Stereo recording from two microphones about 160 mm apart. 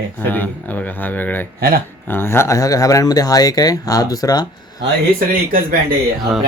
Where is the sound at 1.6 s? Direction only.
70° right (ahead or behind).